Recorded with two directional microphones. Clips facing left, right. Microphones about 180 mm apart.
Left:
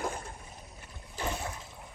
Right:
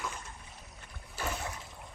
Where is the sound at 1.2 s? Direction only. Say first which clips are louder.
Left 2 dB; 15° left (ahead or behind).